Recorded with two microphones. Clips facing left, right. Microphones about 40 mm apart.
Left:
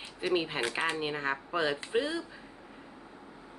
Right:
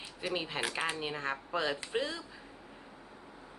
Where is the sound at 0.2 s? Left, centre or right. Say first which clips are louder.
Left 5 dB; centre.